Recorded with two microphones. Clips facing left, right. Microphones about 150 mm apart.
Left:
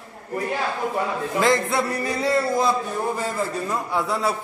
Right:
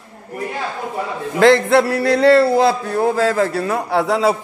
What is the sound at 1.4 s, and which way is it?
A man's voice, 80° right.